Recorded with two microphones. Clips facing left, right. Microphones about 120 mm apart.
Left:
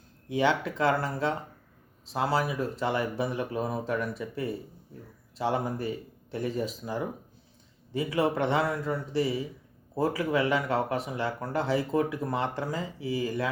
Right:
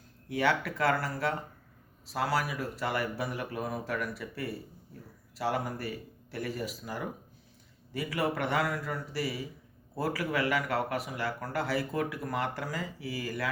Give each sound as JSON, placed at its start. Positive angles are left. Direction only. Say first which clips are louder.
{"t": 0.3, "sound": "speech", "louder": "left 3 dB", "side_deg": 20}